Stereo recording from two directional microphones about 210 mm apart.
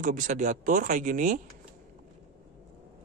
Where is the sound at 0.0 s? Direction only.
35° right (ahead or behind).